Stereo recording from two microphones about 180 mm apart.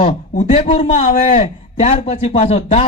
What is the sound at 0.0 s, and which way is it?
A man's voice, 35° left (ahead or behind).